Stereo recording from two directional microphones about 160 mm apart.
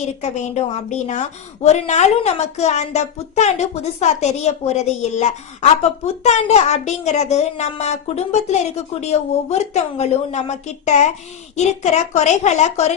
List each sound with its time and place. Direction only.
0.0 s a woman's voice: 45° left (ahead or behind)